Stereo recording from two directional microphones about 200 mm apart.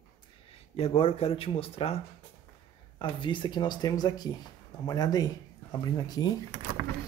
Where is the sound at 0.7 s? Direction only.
30° left (ahead or behind).